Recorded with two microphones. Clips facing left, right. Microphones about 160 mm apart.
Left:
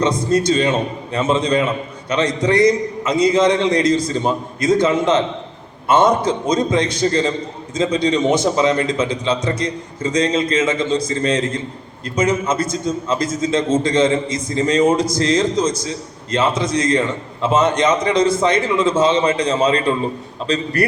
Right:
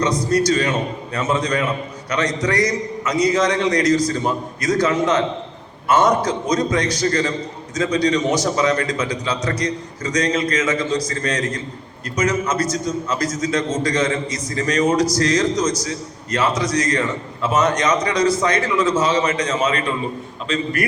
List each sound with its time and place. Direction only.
0.3 s a man's voice: 25° left (ahead or behind)